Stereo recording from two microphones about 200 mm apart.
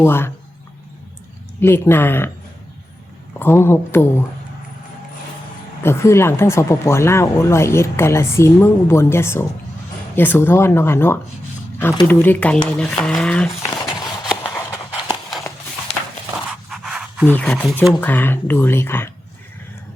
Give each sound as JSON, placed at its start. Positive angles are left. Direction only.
{"t": 0.0, "sound": "speech", "side_deg": 10}
{"t": 1.6, "sound": "speech", "side_deg": 10}
{"t": 3.3, "sound": "speech", "side_deg": 10}
{"t": 5.8, "sound": "speech", "side_deg": 15}
{"t": 13.6, "sound": "a sound", "side_deg": 25}
{"t": 16.6, "sound": "a sound", "side_deg": 0}
{"t": 17.3, "sound": "speech", "side_deg": 5}